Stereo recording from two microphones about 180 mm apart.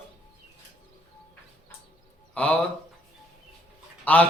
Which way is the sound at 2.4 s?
5° left (ahead or behind).